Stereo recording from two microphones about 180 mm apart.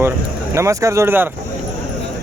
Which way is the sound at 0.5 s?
15° right (ahead or behind).